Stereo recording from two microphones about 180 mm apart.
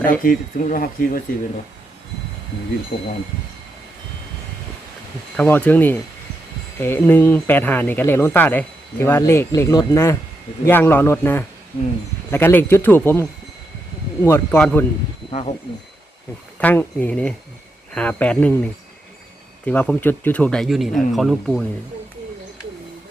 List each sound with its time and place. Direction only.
0.2 s speech: 50° left (ahead or behind)
2.9 s speech: 40° left (ahead or behind)
5.4 s speech: 10° left (ahead or behind)
14.3 s speech: 15° left (ahead or behind)
15.3 s speech: 35° left (ahead or behind)
16.6 s speech: 10° left (ahead or behind)